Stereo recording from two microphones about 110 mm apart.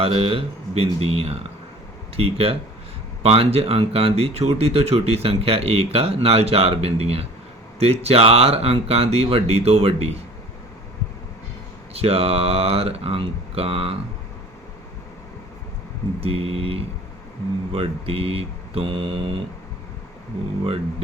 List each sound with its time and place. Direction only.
0.0 s speech: 60° right (ahead or behind)
11.9 s speech: 65° right (ahead or behind)
16.2 s speech: 60° right (ahead or behind)